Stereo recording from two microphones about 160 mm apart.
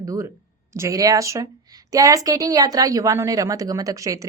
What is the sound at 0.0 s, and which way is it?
A woman's voice, 20° right (ahead or behind).